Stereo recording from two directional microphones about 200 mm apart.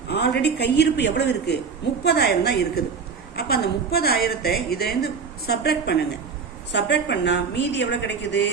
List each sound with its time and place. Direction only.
0.1 s a woman's voice: 55° left (ahead or behind)